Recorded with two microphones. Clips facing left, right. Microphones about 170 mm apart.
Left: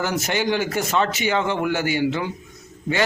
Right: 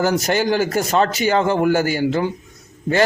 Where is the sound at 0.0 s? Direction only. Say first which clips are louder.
Right 5 dB; 40° right (ahead or behind).